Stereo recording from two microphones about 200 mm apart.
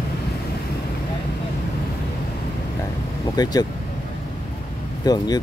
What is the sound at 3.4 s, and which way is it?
Speech, 20° left (ahead or behind).